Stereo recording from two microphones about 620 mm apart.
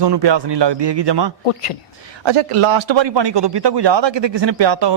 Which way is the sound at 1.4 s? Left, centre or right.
Left.